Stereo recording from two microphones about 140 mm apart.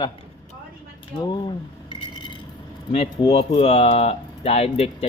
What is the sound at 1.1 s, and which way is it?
Cutlery, 30° left (ahead or behind).